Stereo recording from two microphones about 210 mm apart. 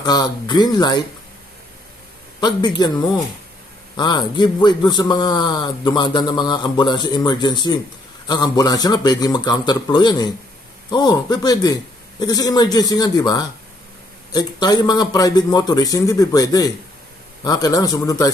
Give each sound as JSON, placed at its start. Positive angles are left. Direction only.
{"t": 0.0, "sound": "a man's voice", "side_deg": 20}
{"t": 2.4, "sound": "a man's voice", "side_deg": 20}